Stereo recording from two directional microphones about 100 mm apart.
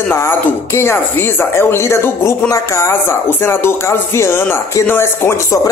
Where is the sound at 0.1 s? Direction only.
25° left (ahead or behind).